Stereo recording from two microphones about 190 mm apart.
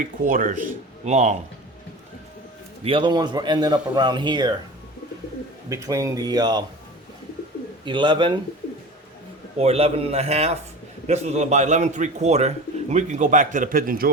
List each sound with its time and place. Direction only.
0.0 s speech: 45° right (ahead or behind)
2.8 s speech: 25° right (ahead or behind)
5.6 s speech: 20° right (ahead or behind)
7.9 s speech: 25° right (ahead or behind)
9.6 s a man's voice: 30° right (ahead or behind); by 14.1 s 50° right (ahead or behind)